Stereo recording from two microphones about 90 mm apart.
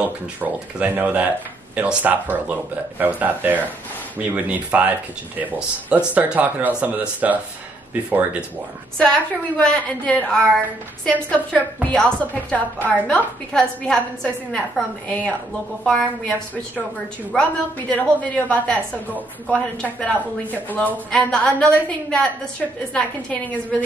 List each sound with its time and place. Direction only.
0.4 s speech: 20° right (ahead or behind)
8.9 s a woman's voice: 10° left (ahead or behind)